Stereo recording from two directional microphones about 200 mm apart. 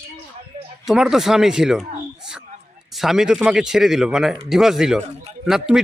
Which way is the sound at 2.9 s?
Centre (ahead or behind).